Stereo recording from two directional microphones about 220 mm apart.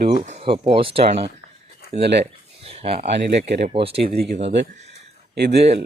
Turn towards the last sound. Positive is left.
turn(degrees=-50)  # may be behind; listen again after turning